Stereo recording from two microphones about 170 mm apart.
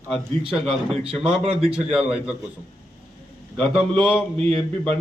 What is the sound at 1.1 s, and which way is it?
Speech, 35° right (ahead or behind).